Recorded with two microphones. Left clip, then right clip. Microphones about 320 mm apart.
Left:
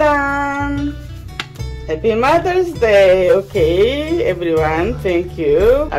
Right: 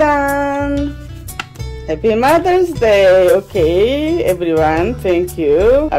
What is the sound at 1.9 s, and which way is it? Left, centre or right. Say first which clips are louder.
Speech: right 2 dB; right.